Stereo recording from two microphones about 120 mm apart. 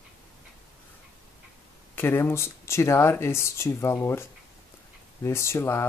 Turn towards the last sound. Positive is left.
turn(degrees=20)  # may be behind; listen again after turning